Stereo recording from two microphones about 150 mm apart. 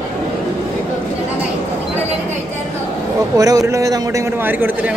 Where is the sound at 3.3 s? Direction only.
25° right (ahead or behind).